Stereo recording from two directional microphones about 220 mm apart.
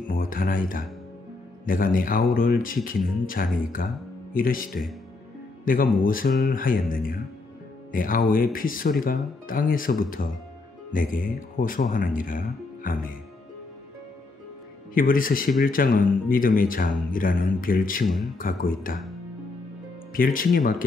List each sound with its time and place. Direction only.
0.0 s speech: 40° left (ahead or behind)
5.7 s speech: 40° left (ahead or behind)
15.0 s speech: 40° left (ahead or behind)
18.0 s speech: centre (ahead or behind)
18.4 s speech: 40° left (ahead or behind)
20.1 s speech: 40° left (ahead or behind)